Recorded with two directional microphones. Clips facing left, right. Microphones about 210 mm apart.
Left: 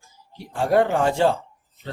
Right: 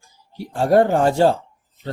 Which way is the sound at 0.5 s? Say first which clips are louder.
Right 4 dB; 40° right (ahead or behind).